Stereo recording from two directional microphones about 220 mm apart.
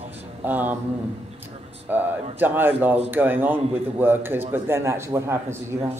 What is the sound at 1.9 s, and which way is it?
A man's voice, 10° right (ahead or behind).